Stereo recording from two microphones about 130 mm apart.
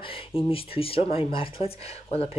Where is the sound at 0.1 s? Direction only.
45° left (ahead or behind).